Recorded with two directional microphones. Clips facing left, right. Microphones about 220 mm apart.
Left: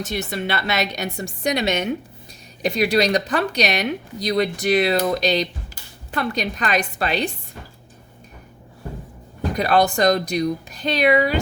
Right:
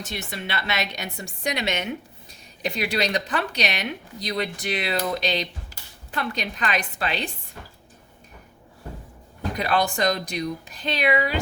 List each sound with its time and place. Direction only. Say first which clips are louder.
0.0 s speech: left 7 dB; 40° left (ahead or behind)
9.6 s speech: left 6 dB; 40° left (ahead or behind)